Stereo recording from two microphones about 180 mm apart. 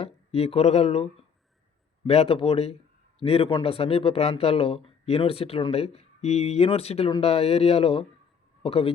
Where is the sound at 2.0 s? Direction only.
35° left (ahead or behind).